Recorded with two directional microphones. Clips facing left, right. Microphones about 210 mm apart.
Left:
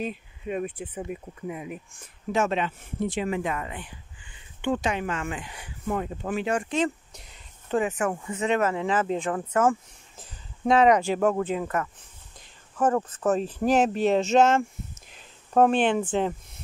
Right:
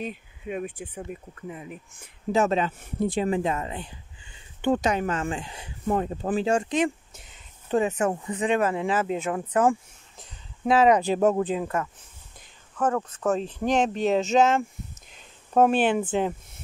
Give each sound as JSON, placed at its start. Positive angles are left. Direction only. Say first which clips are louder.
{"t": 0.0, "sound": "speech", "louder": "left 2 dB", "side_deg": 0}
{"t": 2.3, "sound": "speech", "louder": "right 2 dB", "side_deg": -35}
{"t": 4.6, "sound": "speech", "louder": "right 3 dB", "side_deg": -40}
{"t": 7.7, "sound": "speech", "louder": "right 2 dB", "side_deg": -20}
{"t": 10.1, "sound": "a sound", "louder": "left 1 dB", "side_deg": 0}
{"t": 11.1, "sound": "speech", "louder": "right 2 dB", "side_deg": -20}
{"t": 12.7, "sound": "speech", "louder": "left 2 dB", "side_deg": 5}